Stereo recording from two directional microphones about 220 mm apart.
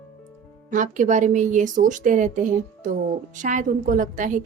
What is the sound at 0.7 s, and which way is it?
Speech, 35° right (ahead or behind).